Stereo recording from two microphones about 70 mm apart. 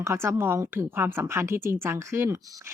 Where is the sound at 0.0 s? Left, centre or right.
Right.